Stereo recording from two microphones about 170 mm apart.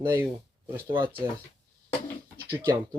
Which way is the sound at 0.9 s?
30° right (ahead or behind).